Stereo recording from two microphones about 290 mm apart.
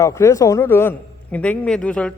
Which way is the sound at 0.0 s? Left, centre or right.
Centre.